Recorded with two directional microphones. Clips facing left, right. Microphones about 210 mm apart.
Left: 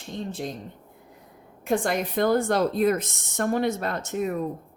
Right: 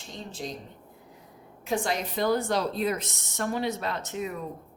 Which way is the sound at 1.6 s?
55° left (ahead or behind).